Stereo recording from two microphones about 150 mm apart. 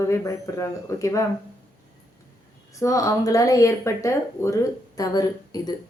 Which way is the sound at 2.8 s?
20° left (ahead or behind).